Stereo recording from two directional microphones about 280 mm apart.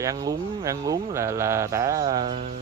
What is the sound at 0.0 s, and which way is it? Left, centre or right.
Speech, centre.